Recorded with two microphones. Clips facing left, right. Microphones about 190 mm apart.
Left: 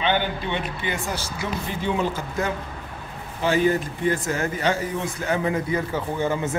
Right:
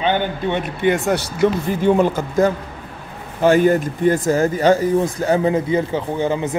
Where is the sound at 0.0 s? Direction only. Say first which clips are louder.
Right 4 dB; 45° right (ahead or behind).